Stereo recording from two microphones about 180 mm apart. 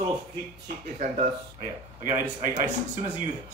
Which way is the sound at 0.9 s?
45° right (ahead or behind).